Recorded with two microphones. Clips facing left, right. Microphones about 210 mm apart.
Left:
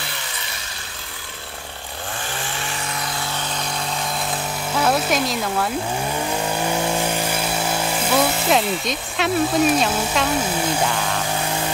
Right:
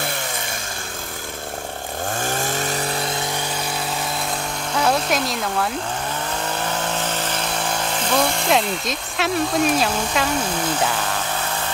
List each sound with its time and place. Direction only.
2.2 s chainsaw: 45° right (ahead or behind)
4.7 s speech: centre (ahead or behind)
6.6 s vehicle: 10° left (ahead or behind)